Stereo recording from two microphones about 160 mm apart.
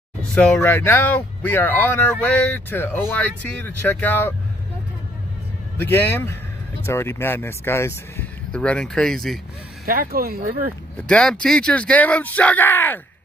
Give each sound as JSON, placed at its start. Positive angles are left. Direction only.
{"t": 0.3, "sound": "speech", "side_deg": 10}
{"t": 5.8, "sound": "speech", "side_deg": 15}
{"t": 9.8, "sound": "speech", "side_deg": -65}
{"t": 11.0, "sound": "speech", "side_deg": 5}